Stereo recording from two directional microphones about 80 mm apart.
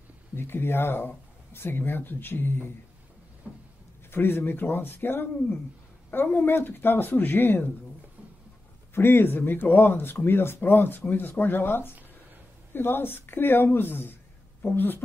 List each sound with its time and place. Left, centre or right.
0.4 s speech: left
3.4 s vehicle: centre
4.1 s speech: left
8.9 s speech: left